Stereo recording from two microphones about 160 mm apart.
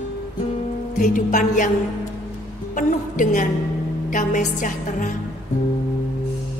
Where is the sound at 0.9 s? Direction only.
50° left (ahead or behind).